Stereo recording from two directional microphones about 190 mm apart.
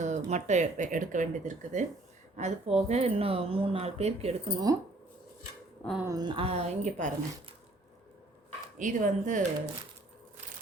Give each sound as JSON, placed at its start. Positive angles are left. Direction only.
{"t": 0.0, "sound": "speech", "side_deg": -40}
{"t": 5.8, "sound": "speech", "side_deg": 0}
{"t": 6.1, "sound": "speech", "side_deg": -20}
{"t": 8.8, "sound": "speech", "side_deg": -40}